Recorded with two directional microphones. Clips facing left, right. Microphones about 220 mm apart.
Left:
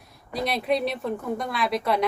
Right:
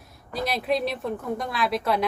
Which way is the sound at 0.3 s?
Centre (ahead or behind).